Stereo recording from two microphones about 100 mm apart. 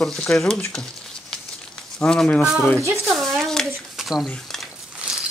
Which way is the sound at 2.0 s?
10° left (ahead or behind).